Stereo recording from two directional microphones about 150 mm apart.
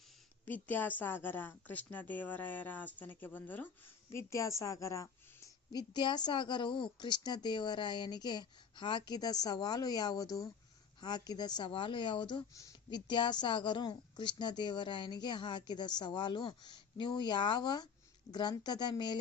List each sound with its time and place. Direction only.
0.4 s a woman's voice: 10° left (ahead or behind); by 19.2 s 30° left (ahead or behind)